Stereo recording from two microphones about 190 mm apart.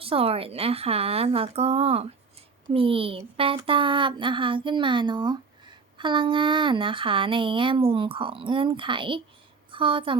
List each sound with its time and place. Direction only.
0.0 s speech: 30° right (ahead or behind)